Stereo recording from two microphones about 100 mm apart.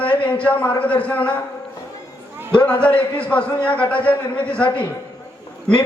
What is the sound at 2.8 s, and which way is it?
Speech, 15° left (ahead or behind).